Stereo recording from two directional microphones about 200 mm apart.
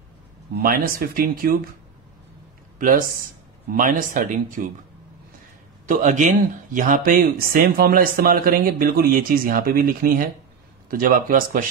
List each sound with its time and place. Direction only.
0.6 s speech: 45° right (ahead or behind)
2.8 s speech: 45° right (ahead or behind)
5.9 s speech: 40° right (ahead or behind)